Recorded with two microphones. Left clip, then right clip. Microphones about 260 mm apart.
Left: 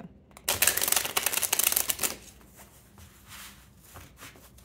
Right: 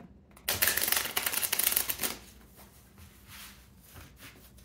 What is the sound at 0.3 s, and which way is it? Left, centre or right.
Typewriter, left.